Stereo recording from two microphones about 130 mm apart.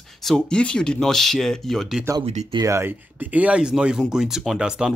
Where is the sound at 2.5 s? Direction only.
25° right (ahead or behind).